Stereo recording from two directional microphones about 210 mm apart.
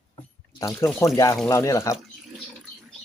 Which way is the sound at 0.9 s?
15° left (ahead or behind).